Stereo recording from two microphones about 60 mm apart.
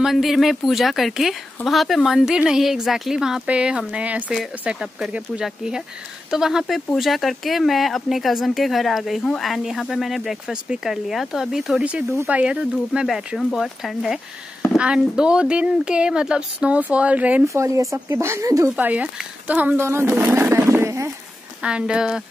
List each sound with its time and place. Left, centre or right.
0.0 s speech: centre
3.4 s speech: centre
4.6 s speech: centre
12.3 s speech: centre
13.5 s speech: centre
14.8 s speech: centre
17.5 s speech: right
18.8 s speech: right
19.8 s speech: right
21.6 s speech: centre